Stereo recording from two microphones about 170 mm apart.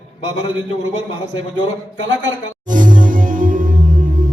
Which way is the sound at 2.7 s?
50° right (ahead or behind).